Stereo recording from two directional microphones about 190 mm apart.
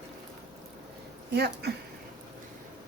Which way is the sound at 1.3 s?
60° right (ahead or behind).